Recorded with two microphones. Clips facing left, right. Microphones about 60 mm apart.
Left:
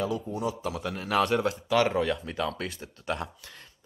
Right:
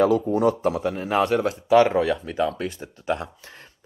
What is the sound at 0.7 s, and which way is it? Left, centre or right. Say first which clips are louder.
Speech: right 9 dB; right.